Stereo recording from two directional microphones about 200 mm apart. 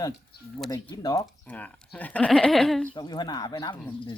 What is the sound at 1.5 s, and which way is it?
Speech, 5° left (ahead or behind).